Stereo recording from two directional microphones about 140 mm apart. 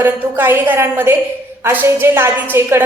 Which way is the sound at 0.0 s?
15° right (ahead or behind).